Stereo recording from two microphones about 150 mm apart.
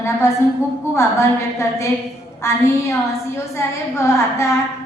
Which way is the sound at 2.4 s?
20° left (ahead or behind).